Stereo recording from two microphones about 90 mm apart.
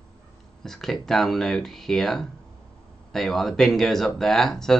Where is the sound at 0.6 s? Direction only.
5° left (ahead or behind).